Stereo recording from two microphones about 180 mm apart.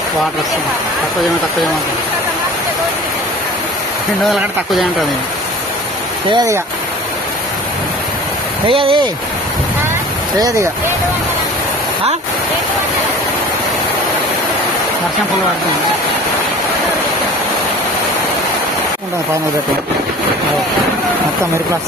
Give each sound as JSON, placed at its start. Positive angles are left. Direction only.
{"t": 4.3, "sound": "speech", "side_deg": 0}
{"t": 6.3, "sound": "speech", "side_deg": -20}
{"t": 8.6, "sound": "speech", "side_deg": -30}
{"t": 10.3, "sound": "speech", "side_deg": -20}